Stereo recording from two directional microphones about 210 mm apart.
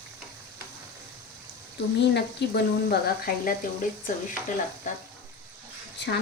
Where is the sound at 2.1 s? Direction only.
55° left (ahead or behind).